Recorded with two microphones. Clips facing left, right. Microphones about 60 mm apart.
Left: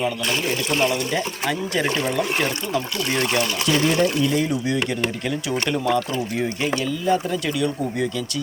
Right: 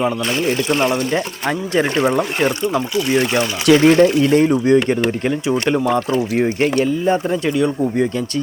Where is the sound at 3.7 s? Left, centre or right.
Right.